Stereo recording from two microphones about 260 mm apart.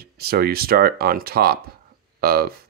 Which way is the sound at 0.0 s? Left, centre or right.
Right.